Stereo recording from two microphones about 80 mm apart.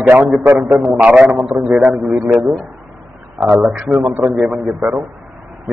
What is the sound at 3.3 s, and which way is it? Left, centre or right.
A man's voice, centre.